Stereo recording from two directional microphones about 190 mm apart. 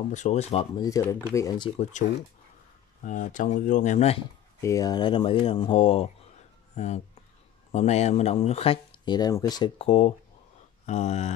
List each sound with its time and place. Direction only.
0.1 s speech: 40° left (ahead or behind)
0.8 s speech: 15° left (ahead or behind)
1.8 s speech: 40° left (ahead or behind)
4.6 s speech: 15° left (ahead or behind); by 11.3 s 35° left (ahead or behind)